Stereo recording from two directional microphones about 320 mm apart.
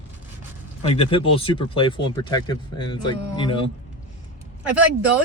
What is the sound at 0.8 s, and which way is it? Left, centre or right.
Speech, centre.